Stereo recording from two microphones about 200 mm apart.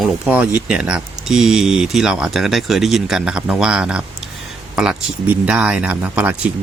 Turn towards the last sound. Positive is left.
turn(degrees=-5)  # may be behind; listen again after turning